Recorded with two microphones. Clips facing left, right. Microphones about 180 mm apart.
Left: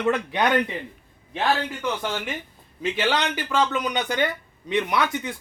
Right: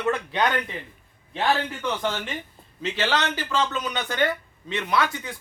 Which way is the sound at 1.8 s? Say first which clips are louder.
Even; 10° left (ahead or behind).